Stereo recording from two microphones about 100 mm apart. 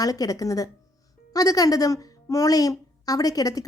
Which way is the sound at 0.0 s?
35° left (ahead or behind).